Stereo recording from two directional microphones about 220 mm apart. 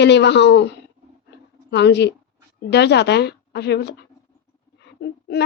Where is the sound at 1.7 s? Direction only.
50° left (ahead or behind).